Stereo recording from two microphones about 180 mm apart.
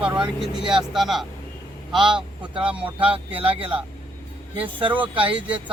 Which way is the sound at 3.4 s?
30° right (ahead or behind).